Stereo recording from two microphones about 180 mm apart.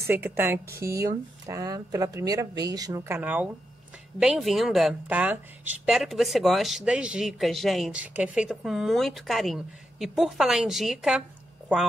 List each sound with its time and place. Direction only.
0.0 s speech: 10° right (ahead or behind)